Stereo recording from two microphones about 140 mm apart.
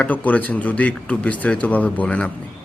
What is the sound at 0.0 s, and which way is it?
Speech, 10° left (ahead or behind).